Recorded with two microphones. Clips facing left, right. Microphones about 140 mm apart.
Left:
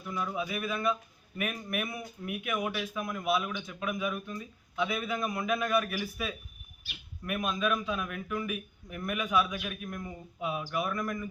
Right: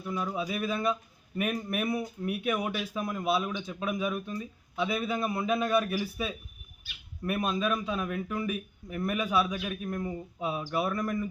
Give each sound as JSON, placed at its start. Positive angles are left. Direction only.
{"t": 0.1, "sound": "speech", "side_deg": -30}